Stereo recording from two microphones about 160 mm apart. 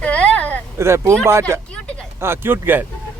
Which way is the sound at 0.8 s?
15° right (ahead or behind).